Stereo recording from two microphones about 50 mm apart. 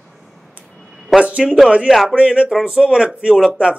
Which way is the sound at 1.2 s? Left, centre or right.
Right.